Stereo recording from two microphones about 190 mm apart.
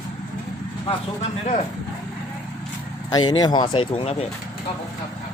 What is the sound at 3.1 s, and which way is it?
Speech, 20° left (ahead or behind).